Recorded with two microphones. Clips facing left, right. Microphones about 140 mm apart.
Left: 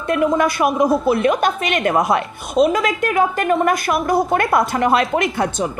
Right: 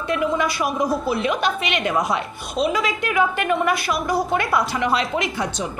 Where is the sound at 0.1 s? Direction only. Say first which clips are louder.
Left 5 dB; 50° left (ahead or behind).